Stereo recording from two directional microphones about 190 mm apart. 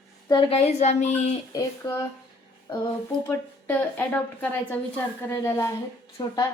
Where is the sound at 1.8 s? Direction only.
25° left (ahead or behind).